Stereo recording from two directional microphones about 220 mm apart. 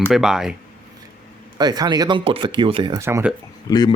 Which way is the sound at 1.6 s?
20° right (ahead or behind).